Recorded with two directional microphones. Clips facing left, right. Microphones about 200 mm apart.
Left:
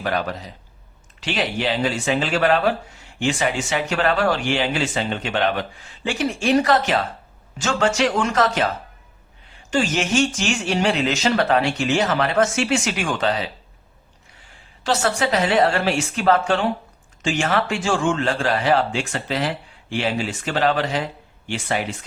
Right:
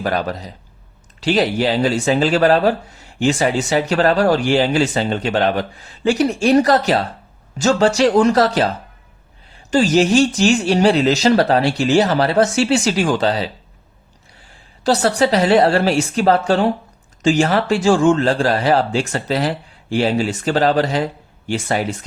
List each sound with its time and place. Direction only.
0.0 s speech: 40° right (ahead or behind)
14.8 s speech: 35° right (ahead or behind)